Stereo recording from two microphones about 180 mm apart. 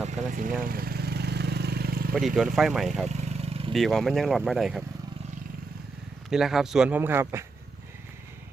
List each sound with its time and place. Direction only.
0.0 s vehicle: 45° right (ahead or behind)
2.1 s speech: centre (ahead or behind)
3.1 s vehicle: 35° right (ahead or behind)
3.7 s speech: centre (ahead or behind)
6.3 s speech: centre (ahead or behind)